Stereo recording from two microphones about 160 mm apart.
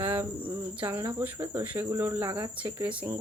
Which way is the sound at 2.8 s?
10° right (ahead or behind).